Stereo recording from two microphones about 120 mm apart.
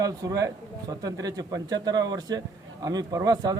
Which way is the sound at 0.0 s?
30° right (ahead or behind).